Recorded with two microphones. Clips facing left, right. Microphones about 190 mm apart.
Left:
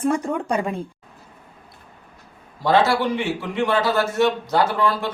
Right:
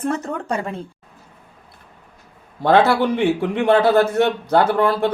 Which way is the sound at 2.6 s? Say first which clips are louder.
Right 3 dB; 55° right (ahead or behind).